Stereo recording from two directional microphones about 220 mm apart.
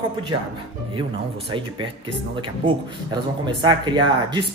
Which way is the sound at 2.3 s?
20° right (ahead or behind).